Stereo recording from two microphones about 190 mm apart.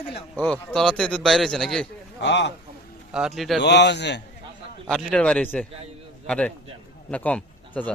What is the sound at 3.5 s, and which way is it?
Speech, 65° left (ahead or behind).